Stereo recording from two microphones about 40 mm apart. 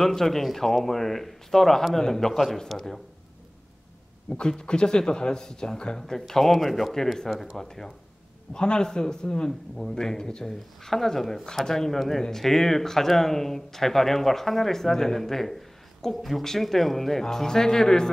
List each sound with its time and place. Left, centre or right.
0.0 s speech: centre
4.4 s speech: left
8.5 s speech: left